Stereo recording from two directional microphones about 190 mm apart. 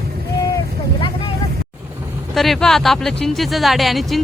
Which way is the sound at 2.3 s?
Centre (ahead or behind).